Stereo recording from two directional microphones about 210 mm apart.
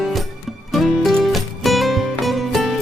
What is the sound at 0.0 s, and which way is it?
Music, centre (ahead or behind).